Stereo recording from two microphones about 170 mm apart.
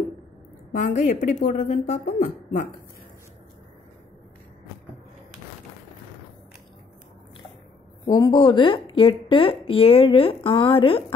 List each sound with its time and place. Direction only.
0.7 s speech: 50° left (ahead or behind)
8.0 s a woman's voice: 25° left (ahead or behind)